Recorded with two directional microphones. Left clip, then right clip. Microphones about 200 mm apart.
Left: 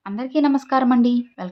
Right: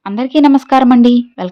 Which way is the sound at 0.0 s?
40° right (ahead or behind).